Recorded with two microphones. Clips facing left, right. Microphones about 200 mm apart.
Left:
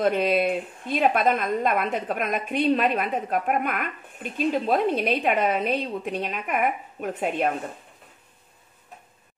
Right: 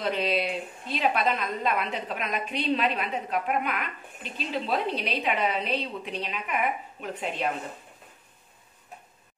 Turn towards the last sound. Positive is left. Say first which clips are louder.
# left 6 dB
turn(degrees=50)  # may be behind; listen again after turning